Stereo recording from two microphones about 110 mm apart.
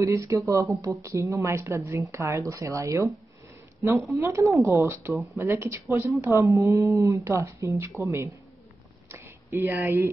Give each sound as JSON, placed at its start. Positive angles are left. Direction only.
{"t": 0.0, "sound": "speech", "side_deg": -30}
{"t": 4.2, "sound": "speech", "side_deg": -30}
{"t": 9.1, "sound": "a sound", "side_deg": -25}